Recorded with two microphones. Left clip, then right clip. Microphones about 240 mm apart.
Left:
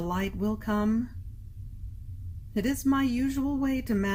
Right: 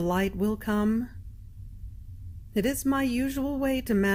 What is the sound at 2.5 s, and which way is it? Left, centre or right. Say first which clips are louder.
Speech: right 1 dB; right.